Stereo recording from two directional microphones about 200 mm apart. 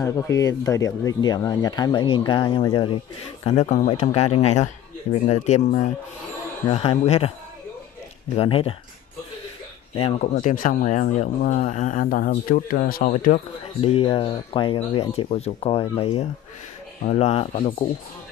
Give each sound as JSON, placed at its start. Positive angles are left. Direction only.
{"t": 0.0, "sound": "speech", "side_deg": 15}
{"t": 8.4, "sound": "speech", "side_deg": 30}
{"t": 9.9, "sound": "speech", "side_deg": 30}
{"t": 13.7, "sound": "speech", "side_deg": 30}